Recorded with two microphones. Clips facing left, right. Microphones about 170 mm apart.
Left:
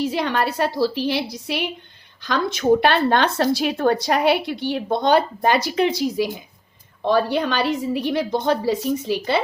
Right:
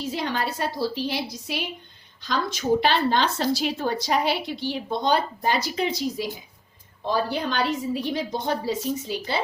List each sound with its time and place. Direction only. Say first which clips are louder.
0.0 s a woman's voice: left 6 dB; 70° left (ahead or behind)